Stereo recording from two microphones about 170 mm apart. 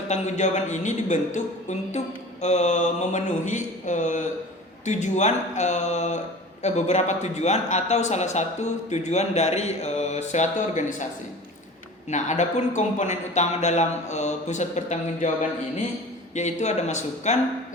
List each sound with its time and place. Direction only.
0.1 s a man's voice: 45° left (ahead or behind)
2.4 s a man's voice: 40° left (ahead or behind)
12.0 s a man's voice: 45° left (ahead or behind)